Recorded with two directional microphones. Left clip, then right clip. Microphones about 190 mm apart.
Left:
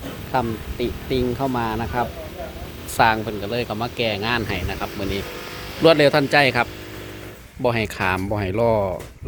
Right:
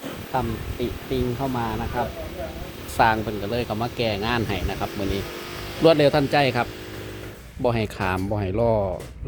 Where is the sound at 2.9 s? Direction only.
Centre (ahead or behind).